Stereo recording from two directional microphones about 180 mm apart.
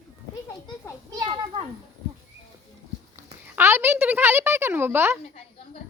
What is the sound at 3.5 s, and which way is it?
A woman's voice, 10° right (ahead or behind).